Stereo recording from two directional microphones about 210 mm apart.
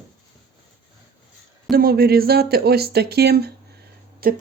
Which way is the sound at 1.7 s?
45° right (ahead or behind).